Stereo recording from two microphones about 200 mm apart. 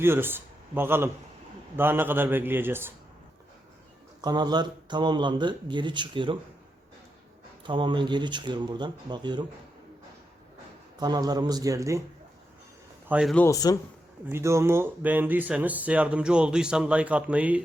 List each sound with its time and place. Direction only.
0.0 s a man's voice: 10° right (ahead or behind)
4.2 s speech: 20° right (ahead or behind)
7.6 s speech: 25° right (ahead or behind)
11.0 s speech: 20° right (ahead or behind)
13.1 s a man's voice: 5° right (ahead or behind)
13.3 s speech: 15° left (ahead or behind)
14.3 s speech: 15° right (ahead or behind)